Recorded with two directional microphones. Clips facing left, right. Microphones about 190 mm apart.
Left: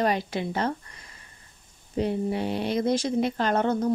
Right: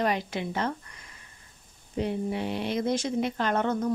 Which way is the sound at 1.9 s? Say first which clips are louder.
Left 3 dB; 35° left (ahead or behind).